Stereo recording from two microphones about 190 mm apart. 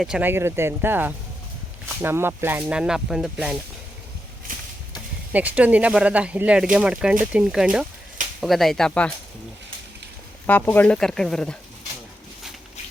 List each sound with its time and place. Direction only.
0.0 s speech: 5° right (ahead or behind)
5.3 s speech: 10° right (ahead or behind)
10.4 s speech: 10° left (ahead or behind)